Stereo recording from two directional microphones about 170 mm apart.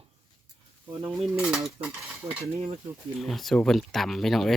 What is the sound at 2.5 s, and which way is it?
Speech, 40° right (ahead or behind).